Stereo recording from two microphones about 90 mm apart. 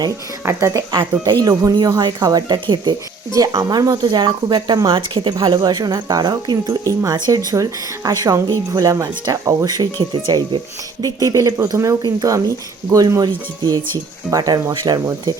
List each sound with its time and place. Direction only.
0.4 s a woman's voice: 30° right (ahead or behind)
1.3 s speech: 45° right (ahead or behind)
3.3 s speech: 40° right (ahead or behind)